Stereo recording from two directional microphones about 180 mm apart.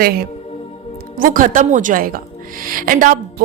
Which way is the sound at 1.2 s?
50° right (ahead or behind).